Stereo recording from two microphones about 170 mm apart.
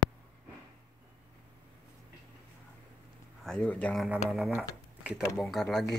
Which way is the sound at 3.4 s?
5° left (ahead or behind).